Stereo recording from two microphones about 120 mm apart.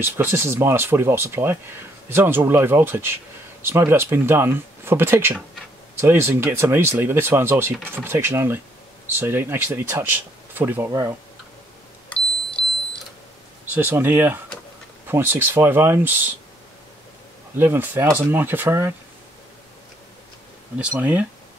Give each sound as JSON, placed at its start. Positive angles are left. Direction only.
{"t": 0.0, "sound": "speech", "side_deg": -20}
{"t": 12.1, "sound": "a sound", "side_deg": 10}
{"t": 13.7, "sound": "speech", "side_deg": -15}
{"t": 17.6, "sound": "speech", "side_deg": -20}
{"t": 21.0, "sound": "speech", "side_deg": -15}